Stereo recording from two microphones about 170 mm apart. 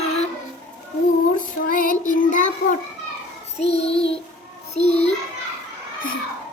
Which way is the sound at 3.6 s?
35° left (ahead or behind).